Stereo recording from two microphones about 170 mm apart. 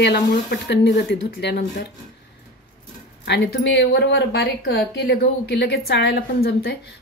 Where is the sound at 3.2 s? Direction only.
85° left.